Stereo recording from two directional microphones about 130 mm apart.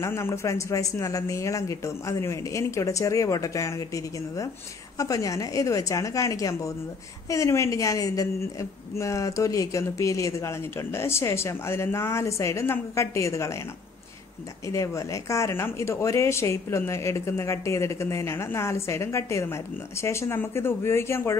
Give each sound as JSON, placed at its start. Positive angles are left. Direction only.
{"t": 0.0, "sound": "speech", "side_deg": 20}
{"t": 14.7, "sound": "speech", "side_deg": 25}